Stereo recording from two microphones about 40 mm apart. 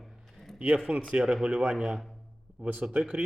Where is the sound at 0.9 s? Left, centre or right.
Right.